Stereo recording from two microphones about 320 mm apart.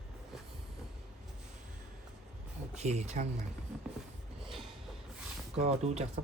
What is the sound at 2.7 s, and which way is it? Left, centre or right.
Speech, right.